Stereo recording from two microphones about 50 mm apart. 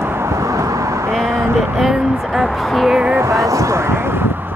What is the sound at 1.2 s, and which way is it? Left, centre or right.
Vehicle, right.